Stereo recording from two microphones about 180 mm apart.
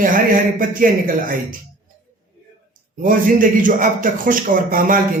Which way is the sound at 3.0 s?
50° right (ahead or behind).